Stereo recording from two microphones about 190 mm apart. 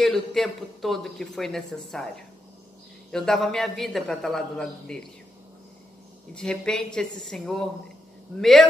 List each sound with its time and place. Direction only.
0.0 s speech: centre (ahead or behind)
6.3 s speech: 5° left (ahead or behind)